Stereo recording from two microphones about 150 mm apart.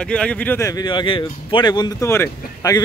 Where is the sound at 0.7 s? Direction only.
30° left (ahead or behind).